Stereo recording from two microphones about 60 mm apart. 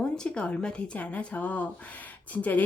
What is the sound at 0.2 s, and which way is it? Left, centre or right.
Speech, centre.